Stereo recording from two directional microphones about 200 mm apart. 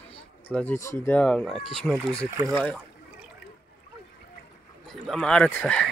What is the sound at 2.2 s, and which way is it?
Speech, 15° right (ahead or behind).